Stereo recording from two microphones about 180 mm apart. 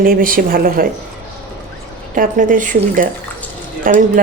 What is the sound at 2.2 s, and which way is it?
Speech, 45° right (ahead or behind).